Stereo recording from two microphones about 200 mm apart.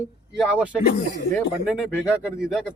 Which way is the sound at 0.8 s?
50° left (ahead or behind).